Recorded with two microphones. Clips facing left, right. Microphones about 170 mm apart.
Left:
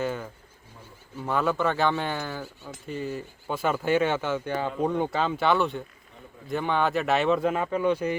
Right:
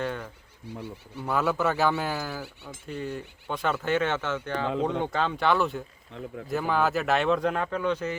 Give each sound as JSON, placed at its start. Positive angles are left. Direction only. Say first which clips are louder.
{"t": 0.0, "sound": "speech", "louder": "left 2 dB", "side_deg": 5}
{"t": 0.7, "sound": "speech", "louder": "right 8 dB", "side_deg": -70}
{"t": 1.2, "sound": "speech", "louder": "left 1 dB", "side_deg": 0}